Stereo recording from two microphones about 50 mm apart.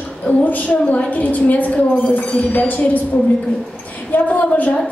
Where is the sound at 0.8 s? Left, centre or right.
Left.